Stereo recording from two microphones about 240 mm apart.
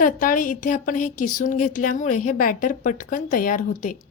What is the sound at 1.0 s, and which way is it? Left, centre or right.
Speech, left.